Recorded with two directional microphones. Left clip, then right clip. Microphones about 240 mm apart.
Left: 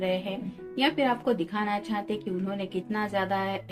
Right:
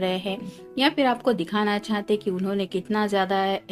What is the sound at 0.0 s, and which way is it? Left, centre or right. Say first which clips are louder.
A woman's voice: right 3 dB; right.